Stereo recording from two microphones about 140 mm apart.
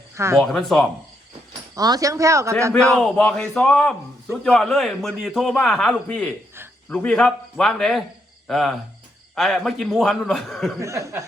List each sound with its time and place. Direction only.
0.3 s a man's voice: centre (ahead or behind)
1.7 s speech: 25° right (ahead or behind)
3.0 s a man's voice: 5° left (ahead or behind)
10.8 s speech: 20° right (ahead or behind)